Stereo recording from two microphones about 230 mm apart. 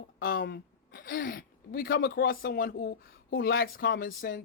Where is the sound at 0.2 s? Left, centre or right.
Left.